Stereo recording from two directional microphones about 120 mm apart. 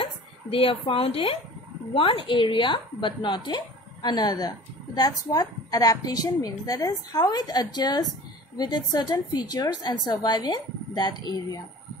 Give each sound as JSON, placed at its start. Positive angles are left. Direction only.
{"t": 0.0, "sound": "a woman's voice", "side_deg": 50}